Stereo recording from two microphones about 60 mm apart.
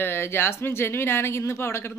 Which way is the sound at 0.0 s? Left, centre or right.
Left.